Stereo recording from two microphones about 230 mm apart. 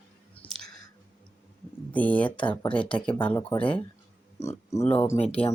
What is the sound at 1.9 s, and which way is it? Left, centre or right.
Speech, centre.